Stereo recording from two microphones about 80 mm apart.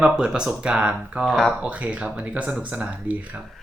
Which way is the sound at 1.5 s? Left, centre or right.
Centre.